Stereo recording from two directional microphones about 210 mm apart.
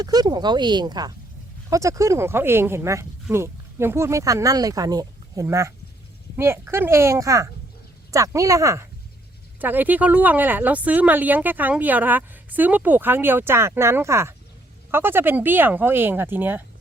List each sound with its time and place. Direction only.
0.0 s speech: 20° right (ahead or behind)